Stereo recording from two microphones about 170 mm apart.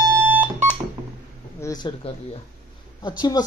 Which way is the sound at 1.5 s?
20° left (ahead or behind).